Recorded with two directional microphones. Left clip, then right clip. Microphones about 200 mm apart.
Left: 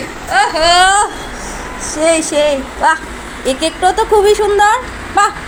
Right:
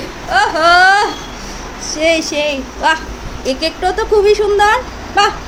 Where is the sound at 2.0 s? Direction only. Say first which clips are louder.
Left 2 dB; centre (ahead or behind).